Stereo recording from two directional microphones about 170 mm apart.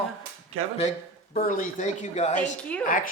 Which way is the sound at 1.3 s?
55° left (ahead or behind).